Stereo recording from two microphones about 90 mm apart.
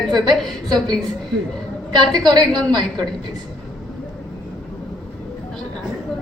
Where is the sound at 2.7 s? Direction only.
55° right (ahead or behind).